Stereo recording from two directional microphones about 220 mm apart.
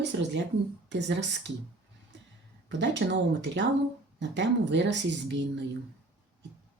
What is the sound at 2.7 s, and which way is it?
Speech, 55° right (ahead or behind).